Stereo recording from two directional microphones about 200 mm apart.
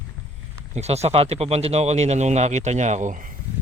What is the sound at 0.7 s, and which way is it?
Speech, 35° right (ahead or behind).